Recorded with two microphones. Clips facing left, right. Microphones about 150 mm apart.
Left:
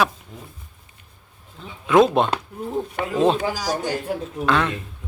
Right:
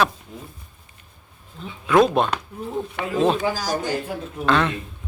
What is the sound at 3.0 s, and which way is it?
Speech, 45° left (ahead or behind).